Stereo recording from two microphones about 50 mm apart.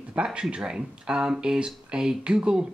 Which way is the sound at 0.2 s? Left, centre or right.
Centre.